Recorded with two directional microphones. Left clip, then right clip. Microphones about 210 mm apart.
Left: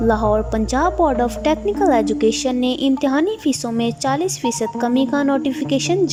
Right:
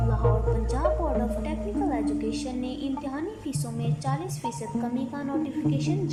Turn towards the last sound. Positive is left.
turn(degrees=50)  # may be behind; listen again after turning